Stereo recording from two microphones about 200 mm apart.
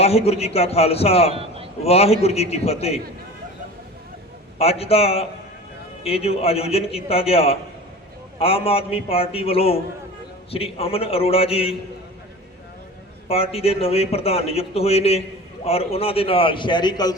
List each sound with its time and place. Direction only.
0.0 s a man's voice: 30° left (ahead or behind)
1.3 s a man's voice: 30° right (ahead or behind)
1.8 s a man's voice: 30° left (ahead or behind)
4.5 s a man's voice: 30° left (ahead or behind)
13.2 s a man's voice: 30° left (ahead or behind)